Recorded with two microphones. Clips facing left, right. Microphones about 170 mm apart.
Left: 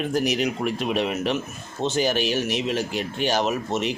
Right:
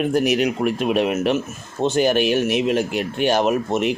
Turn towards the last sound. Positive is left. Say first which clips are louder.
# right 5 dB
turn(degrees=-55)  # may be behind; listen again after turning